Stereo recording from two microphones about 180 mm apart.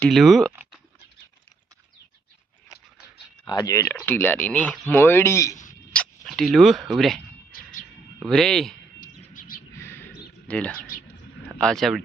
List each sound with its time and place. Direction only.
0.0 s speech: centre (ahead or behind)
3.4 s speech: 20° left (ahead or behind)
5.9 s speech: 5° left (ahead or behind)
8.2 s speech: 5° left (ahead or behind)
9.0 s a sound: 50° left (ahead or behind)
9.7 s a sound: 15° left (ahead or behind)
10.5 s speech: 5° left (ahead or behind)